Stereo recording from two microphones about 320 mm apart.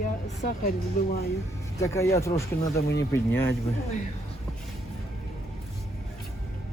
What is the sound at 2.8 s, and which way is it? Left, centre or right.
Speech, left.